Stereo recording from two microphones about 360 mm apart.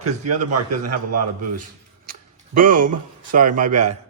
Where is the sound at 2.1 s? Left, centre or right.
Right.